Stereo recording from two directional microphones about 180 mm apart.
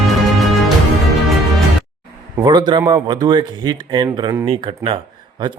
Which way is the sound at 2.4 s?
25° right (ahead or behind).